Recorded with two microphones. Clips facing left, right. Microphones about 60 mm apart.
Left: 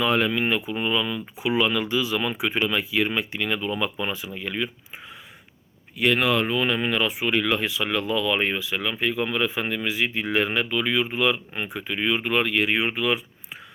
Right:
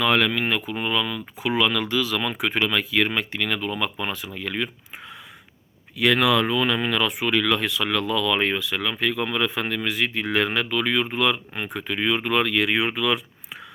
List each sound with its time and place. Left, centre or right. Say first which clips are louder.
0.0 s speech: right 1 dB; right
1.5 s speech: even; right
2.3 s speech: right 1 dB; right
4.4 s speech: right 1 dB; right
6.0 s speech: right 2 dB; right